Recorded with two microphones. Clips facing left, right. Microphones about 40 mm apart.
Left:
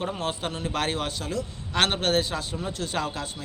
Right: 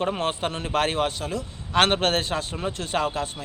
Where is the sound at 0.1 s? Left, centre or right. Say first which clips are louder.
Right 4 dB; right; by 1.9 s centre.